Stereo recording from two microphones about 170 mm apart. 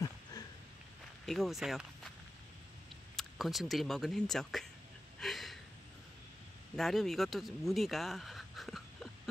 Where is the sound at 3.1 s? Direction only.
Centre (ahead or behind).